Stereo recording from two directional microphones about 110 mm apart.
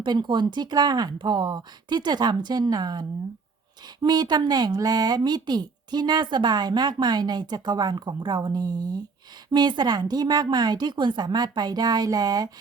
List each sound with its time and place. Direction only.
0.0 s speech: 45° right (ahead or behind)